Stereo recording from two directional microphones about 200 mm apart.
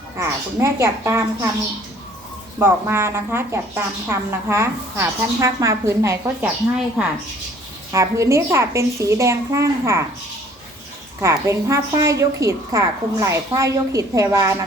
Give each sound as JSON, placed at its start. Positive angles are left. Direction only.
{"t": 0.2, "sound": "a woman's voice", "side_deg": -15}
{"t": 2.6, "sound": "a woman's voice", "side_deg": -10}
{"t": 6.7, "sound": "speech", "side_deg": -5}
{"t": 7.9, "sound": "a woman's voice", "side_deg": -15}
{"t": 11.2, "sound": "a woman's voice", "side_deg": -15}